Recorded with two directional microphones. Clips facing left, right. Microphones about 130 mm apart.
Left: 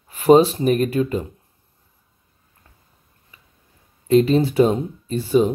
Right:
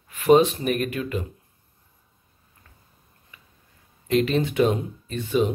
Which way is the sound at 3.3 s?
30° left (ahead or behind).